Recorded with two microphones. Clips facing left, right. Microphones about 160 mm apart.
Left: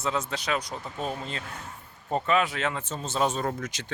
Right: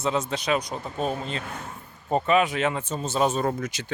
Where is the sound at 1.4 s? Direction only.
60° right (ahead or behind).